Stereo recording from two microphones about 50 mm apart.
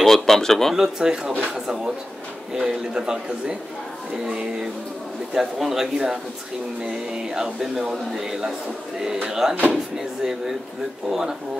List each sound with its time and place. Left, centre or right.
0.0 s speech: centre
0.7 s speech: centre
2.5 s speech: centre
5.3 s speech: centre